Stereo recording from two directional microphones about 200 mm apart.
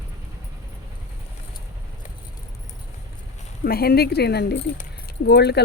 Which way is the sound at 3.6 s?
50° left (ahead or behind).